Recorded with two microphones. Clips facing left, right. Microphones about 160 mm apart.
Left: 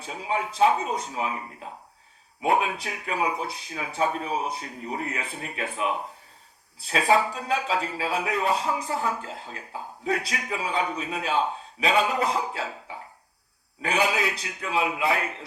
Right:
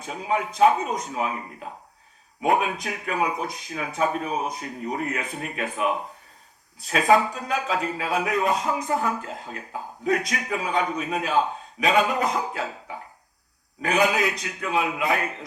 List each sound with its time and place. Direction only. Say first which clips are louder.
0.0 s speech: right 3 dB; 30° left (ahead or behind)
2.4 s speech: right 1 dB; 30° left (ahead or behind)
13.8 s speech: right 3 dB; 30° left (ahead or behind)